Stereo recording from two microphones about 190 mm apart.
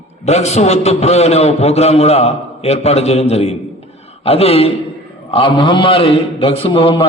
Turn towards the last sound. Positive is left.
turn(degrees=30)  # may be behind; listen again after turning